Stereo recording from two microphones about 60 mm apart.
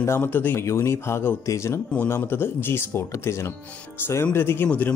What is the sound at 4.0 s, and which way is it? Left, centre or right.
Speech, left.